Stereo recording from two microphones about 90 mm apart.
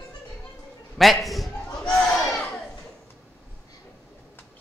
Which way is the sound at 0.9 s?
Centre (ahead or behind).